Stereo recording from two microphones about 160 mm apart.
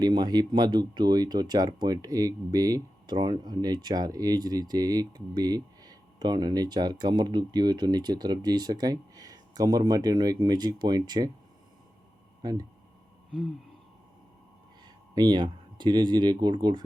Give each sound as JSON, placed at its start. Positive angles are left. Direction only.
{"t": 0.0, "sound": "speech", "side_deg": -25}
{"t": 12.4, "sound": "speech", "side_deg": -25}
{"t": 15.1, "sound": "speech", "side_deg": -25}